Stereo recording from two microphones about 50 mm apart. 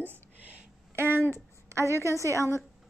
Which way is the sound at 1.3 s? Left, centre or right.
Right.